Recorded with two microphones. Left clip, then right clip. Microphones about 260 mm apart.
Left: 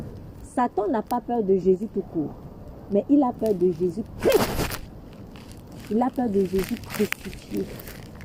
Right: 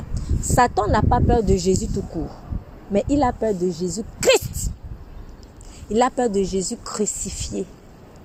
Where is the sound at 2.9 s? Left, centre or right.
Right.